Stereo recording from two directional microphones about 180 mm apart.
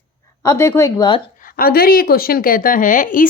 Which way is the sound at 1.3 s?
50° left (ahead or behind).